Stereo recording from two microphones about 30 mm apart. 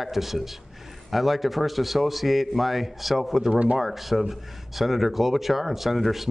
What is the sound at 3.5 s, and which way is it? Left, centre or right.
Speech, right.